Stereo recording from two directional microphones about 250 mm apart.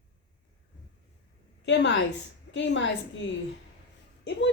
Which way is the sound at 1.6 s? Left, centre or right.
Left.